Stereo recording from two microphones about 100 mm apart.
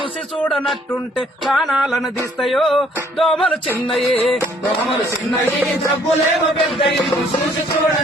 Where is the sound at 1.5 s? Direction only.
5° right (ahead or behind).